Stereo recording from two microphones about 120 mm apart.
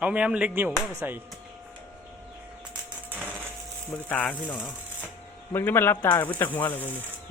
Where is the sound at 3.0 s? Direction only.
15° right (ahead or behind).